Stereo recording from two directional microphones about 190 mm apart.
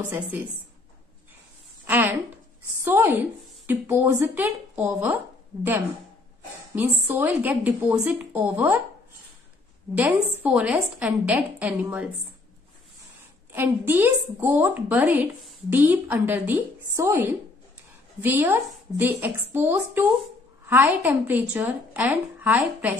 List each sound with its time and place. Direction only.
0.1 s a woman's voice: 10° right (ahead or behind)
1.9 s a sound: 10° right (ahead or behind)
2.8 s a woman's voice: 10° right (ahead or behind)
6.7 s a woman's voice: 10° right (ahead or behind)
9.9 s a woman's voice: 10° right (ahead or behind)
13.5 s a woman's voice: 10° right (ahead or behind)